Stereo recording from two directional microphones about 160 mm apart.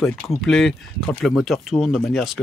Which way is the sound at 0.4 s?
Centre (ahead or behind).